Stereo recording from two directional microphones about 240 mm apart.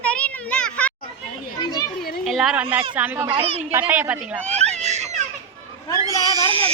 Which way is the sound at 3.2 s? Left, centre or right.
Right.